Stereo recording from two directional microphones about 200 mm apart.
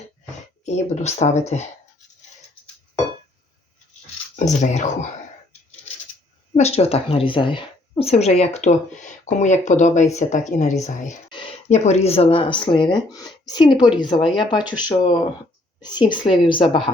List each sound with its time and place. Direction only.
0.6 s a woman's voice: 35° left (ahead or behind)
4.4 s speech: 35° left (ahead or behind)
6.5 s a woman's voice: 30° left (ahead or behind)